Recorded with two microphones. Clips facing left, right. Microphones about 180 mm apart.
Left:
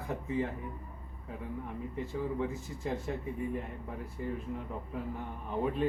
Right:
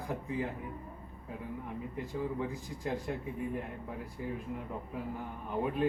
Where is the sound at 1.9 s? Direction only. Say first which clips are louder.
Left 2 dB; centre (ahead or behind).